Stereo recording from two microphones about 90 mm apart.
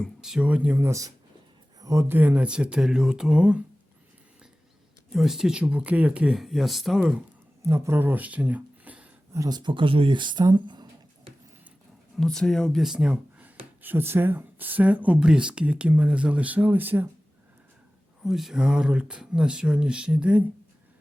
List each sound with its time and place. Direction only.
0.2 s speech: 5° right (ahead or behind)
0.9 s speech: 35° right (ahead or behind)
2.1 s speech: 15° right (ahead or behind)
5.1 s speech: 5° right (ahead or behind)
7.6 s speech: 30° right (ahead or behind)
9.5 s speech: 55° right (ahead or behind)
12.2 s speech: 5° left (ahead or behind)
12.8 s speech: 5° right (ahead or behind)
13.4 s speech: 20° right (ahead or behind)
18.2 s speech: 5° right (ahead or behind)